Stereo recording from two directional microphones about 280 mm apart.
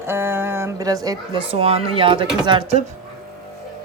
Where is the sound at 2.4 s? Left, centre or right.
Centre.